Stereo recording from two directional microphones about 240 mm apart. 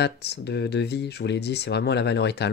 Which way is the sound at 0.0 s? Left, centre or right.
Left.